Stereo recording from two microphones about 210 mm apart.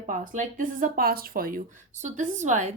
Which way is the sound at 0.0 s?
40° right (ahead or behind).